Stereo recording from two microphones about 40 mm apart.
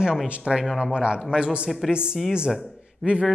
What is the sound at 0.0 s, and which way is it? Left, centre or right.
Speech, centre.